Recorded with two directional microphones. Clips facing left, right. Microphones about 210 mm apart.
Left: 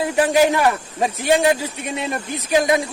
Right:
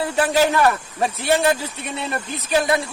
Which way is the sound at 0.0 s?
15° left (ahead or behind).